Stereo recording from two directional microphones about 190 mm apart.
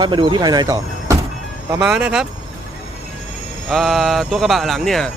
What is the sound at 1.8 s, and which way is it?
Speech, 5° right (ahead or behind).